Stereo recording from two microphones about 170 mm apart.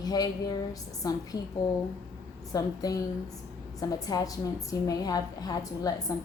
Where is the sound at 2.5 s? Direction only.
20° left (ahead or behind).